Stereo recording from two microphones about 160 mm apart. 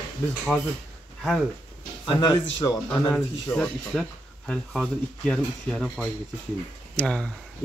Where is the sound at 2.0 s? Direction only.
30° left (ahead or behind).